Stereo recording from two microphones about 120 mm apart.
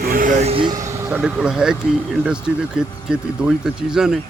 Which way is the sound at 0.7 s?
25° right (ahead or behind).